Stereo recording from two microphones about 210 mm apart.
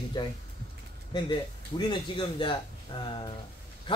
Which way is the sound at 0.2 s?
20° left (ahead or behind).